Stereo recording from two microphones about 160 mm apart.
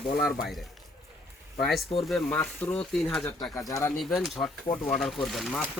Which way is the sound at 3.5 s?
20° left (ahead or behind).